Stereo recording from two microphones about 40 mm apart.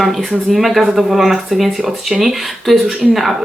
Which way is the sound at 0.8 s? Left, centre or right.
Centre.